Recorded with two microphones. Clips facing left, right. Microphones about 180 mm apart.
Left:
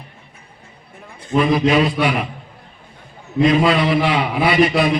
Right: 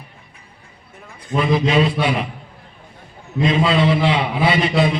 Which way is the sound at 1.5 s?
25° right (ahead or behind).